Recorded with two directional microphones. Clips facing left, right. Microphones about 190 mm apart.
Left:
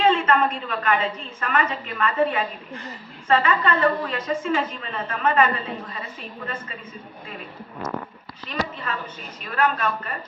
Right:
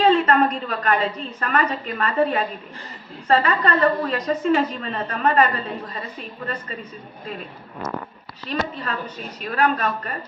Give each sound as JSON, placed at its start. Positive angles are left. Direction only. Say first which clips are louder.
{"t": 0.0, "sound": "a woman's voice", "louder": "right 3 dB", "side_deg": -40}
{"t": 8.4, "sound": "a woman's voice", "louder": "right 3 dB", "side_deg": -40}